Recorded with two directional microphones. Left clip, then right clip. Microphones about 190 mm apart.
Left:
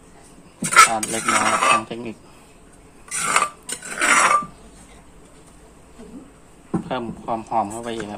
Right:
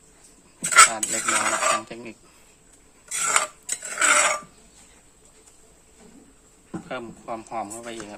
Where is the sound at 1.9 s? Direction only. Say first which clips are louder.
Left 7 dB; 10° right (ahead or behind).